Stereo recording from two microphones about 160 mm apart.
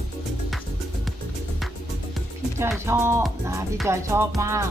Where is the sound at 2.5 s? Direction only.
15° right (ahead or behind).